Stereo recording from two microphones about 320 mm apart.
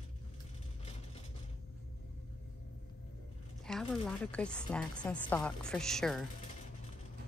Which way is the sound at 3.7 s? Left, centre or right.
Centre.